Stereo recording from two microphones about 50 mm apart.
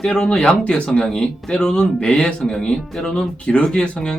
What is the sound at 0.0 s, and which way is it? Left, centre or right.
Speech, centre.